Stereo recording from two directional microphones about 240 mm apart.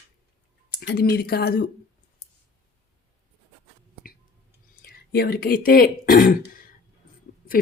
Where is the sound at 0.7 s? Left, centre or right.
Left.